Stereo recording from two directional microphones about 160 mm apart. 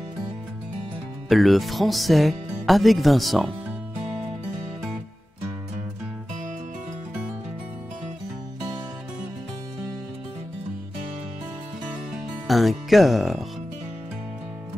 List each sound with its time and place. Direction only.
1.3 s speech: centre (ahead or behind)
12.4 s speech: centre (ahead or behind)